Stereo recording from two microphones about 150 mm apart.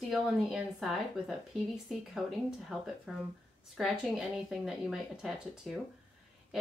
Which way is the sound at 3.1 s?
Centre (ahead or behind).